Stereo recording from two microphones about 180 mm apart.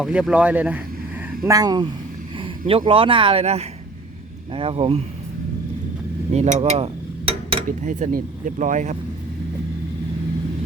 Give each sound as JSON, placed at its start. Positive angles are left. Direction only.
{"t": 0.0, "sound": "speech", "side_deg": -5}
{"t": 1.5, "sound": "speech", "side_deg": -20}
{"t": 6.3, "sound": "a sound", "side_deg": -40}